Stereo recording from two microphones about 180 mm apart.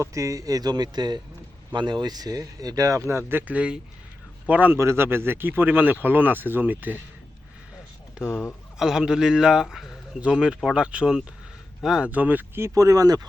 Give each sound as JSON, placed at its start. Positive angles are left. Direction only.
{"t": 0.0, "sound": "a man's voice", "side_deg": -15}
{"t": 8.2, "sound": "speech", "side_deg": 10}
{"t": 8.8, "sound": "a man's voice", "side_deg": -5}